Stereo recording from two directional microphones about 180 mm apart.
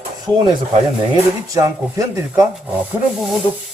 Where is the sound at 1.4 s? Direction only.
20° right (ahead or behind).